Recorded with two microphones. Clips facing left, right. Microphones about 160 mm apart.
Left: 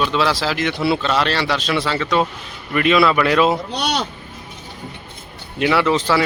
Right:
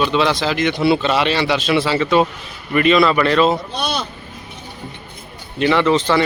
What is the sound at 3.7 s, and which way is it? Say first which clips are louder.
Speech: left 1 dB; 90° left.